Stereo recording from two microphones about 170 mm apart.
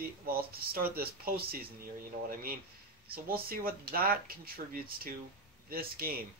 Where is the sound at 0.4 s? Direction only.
65° right (ahead or behind).